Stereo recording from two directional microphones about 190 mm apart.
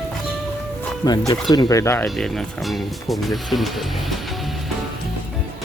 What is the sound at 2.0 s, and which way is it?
Speech, centre (ahead or behind).